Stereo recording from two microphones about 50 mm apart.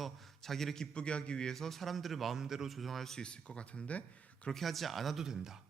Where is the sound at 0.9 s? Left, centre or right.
Left.